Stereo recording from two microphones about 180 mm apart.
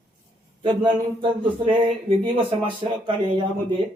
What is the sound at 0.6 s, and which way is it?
Speech, 25° right (ahead or behind).